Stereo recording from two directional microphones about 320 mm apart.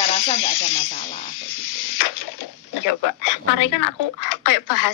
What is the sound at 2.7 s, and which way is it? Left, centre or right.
Speech, left.